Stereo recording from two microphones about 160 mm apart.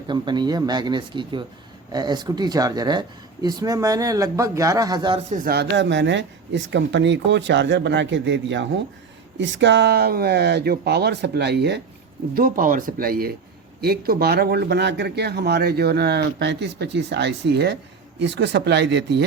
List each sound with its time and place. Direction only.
0.1 s speech: 30° right (ahead or behind)
5.3 s speech: 65° right (ahead or behind); by 8.3 s 90° right
9.6 s speech: 90° right
12.3 s speech: 60° right (ahead or behind); by 19.2 s 90° right